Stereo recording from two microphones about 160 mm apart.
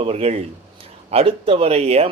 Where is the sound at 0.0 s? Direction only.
40° right (ahead or behind).